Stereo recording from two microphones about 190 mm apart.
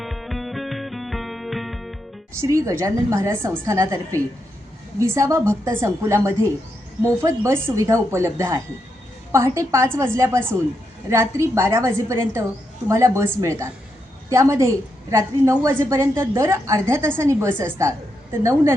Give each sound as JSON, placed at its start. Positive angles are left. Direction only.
{"t": 0.0, "sound": "music", "side_deg": 0}
{"t": 2.4, "sound": "a woman's voice", "side_deg": -15}